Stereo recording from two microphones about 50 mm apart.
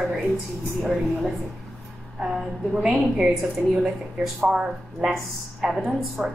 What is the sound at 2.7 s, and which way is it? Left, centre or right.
Speech, centre.